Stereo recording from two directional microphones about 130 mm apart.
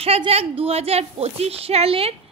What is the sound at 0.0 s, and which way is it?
A woman's voice, 50° right (ahead or behind).